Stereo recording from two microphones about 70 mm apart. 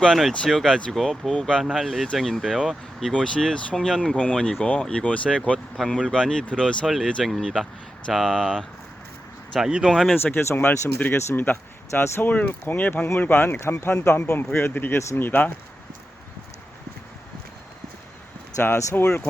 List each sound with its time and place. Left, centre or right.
0.0 s speech: centre
3.0 s speech: centre
5.7 s speech: centre
9.6 s speech: centre
10.5 s speech: left
11.9 s speech: left
18.6 s speech: left